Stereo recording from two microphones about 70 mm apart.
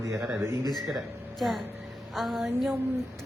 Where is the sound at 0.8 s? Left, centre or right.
Centre.